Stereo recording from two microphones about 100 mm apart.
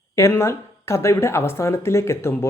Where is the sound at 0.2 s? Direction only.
30° left (ahead or behind).